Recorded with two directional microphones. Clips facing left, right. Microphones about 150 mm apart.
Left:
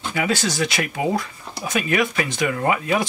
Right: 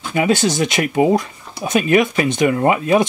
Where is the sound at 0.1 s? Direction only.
20° right (ahead or behind).